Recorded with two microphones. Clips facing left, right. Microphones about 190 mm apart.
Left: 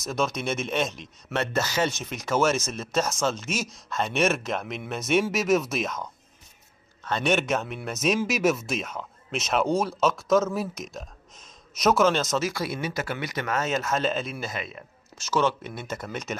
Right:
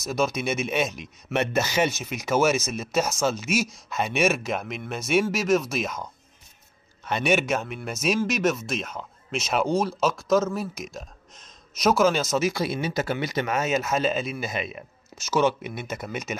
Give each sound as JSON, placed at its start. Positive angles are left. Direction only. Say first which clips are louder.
{"t": 0.0, "sound": "speech", "louder": "right 2 dB", "side_deg": -5}
{"t": 7.1, "sound": "speech", "louder": "right 1 dB", "side_deg": -10}
{"t": 12.4, "sound": "speech", "louder": "right 3 dB", "side_deg": -20}
{"t": 14.5, "sound": "speech", "louder": "right 4 dB", "side_deg": -15}